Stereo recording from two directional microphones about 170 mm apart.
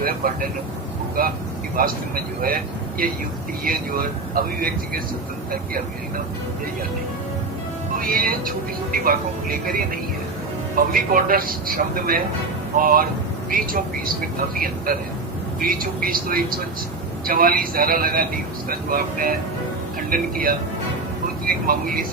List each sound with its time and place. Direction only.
1.2 s speech: 60° right (ahead or behind)
7.9 s speech: 55° right (ahead or behind)